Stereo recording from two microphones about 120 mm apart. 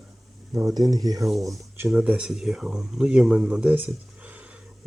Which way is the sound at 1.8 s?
10° right (ahead or behind).